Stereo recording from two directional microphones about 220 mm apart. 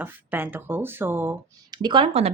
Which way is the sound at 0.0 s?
10° right (ahead or behind).